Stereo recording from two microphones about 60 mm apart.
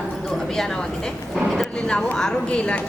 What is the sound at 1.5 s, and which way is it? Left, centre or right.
A woman's voice, centre.